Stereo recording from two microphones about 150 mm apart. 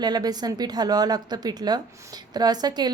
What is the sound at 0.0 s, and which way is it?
Speech, 25° right (ahead or behind).